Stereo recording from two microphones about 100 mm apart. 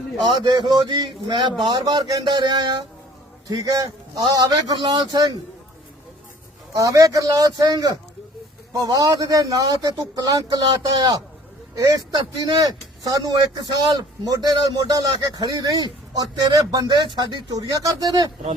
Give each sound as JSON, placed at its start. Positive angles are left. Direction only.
{"t": 0.2, "sound": "a man's voice", "side_deg": -45}
{"t": 6.7, "sound": "a man's voice", "side_deg": -35}